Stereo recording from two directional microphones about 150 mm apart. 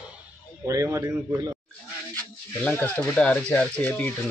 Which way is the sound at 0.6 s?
20° right (ahead or behind).